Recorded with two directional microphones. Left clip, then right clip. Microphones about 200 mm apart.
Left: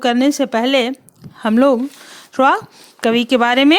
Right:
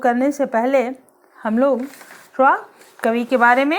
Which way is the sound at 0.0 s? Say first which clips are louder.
Left 2 dB; 45° left (ahead or behind).